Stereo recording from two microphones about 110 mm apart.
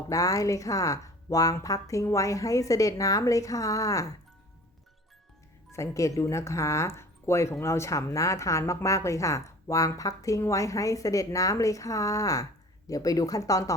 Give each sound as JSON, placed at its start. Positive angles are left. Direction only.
{"t": 0.1, "sound": "speech", "side_deg": 30}
{"t": 5.7, "sound": "speech", "side_deg": 30}